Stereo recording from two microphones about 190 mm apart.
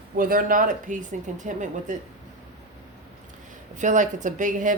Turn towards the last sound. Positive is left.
turn(degrees=-40)  # may be behind; listen again after turning